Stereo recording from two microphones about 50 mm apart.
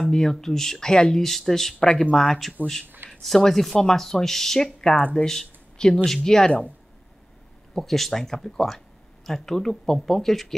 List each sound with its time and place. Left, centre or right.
0.0 s speech: centre
4.7 s speech: centre
7.7 s speech: centre